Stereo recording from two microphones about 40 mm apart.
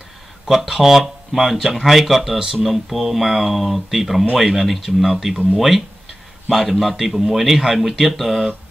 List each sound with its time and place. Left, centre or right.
0.5 s speech: centre
6.5 s speech: centre